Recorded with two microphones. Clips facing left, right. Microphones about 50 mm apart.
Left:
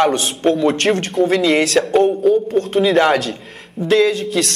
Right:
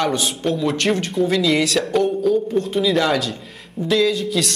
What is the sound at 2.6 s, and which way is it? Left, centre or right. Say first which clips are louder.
Speech: left 5 dB; left.